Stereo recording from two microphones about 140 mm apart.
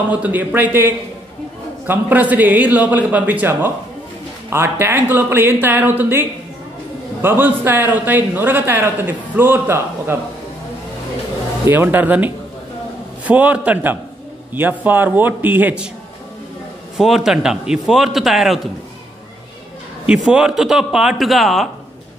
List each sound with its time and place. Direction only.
0.2 s a man's voice: 10° right (ahead or behind)
11.6 s a man's voice: 15° right (ahead or behind)
16.9 s a man's voice: 5° right (ahead or behind)
20.1 s a man's voice: 5° right (ahead or behind)